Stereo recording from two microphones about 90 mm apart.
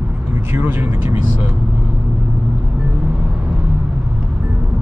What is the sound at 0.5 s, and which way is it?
Speech, 25° right (ahead or behind).